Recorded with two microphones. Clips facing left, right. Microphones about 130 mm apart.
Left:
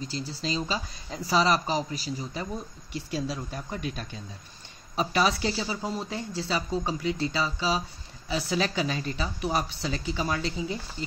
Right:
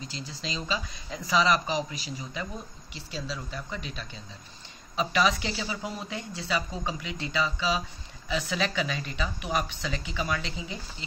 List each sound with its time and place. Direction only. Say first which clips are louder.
0.4 s speech: left 2 dB; 40° left (ahead or behind)
2.9 s speech: left 6 dB; 50° left (ahead or behind)